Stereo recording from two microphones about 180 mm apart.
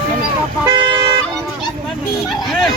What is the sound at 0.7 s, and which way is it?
Vehicle, 25° right (ahead or behind).